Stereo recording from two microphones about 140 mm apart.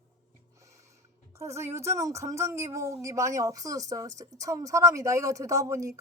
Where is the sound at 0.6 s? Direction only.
20° right (ahead or behind).